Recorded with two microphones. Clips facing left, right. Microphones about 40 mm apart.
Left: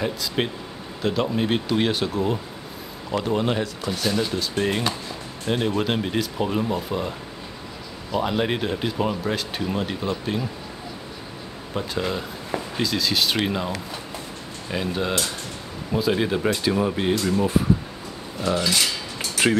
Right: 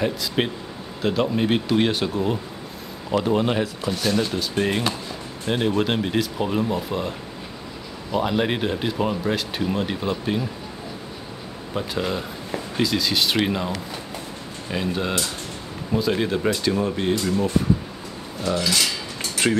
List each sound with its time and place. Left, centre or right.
0.0 s speech: centre
11.7 s speech: centre